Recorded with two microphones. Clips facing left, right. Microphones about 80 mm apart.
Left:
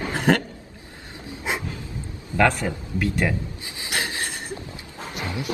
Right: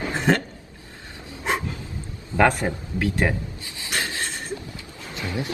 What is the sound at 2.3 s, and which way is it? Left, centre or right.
A man's voice, right.